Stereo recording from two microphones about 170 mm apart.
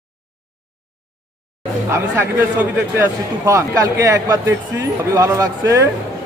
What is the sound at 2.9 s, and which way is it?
A man's voice, 15° right (ahead or behind).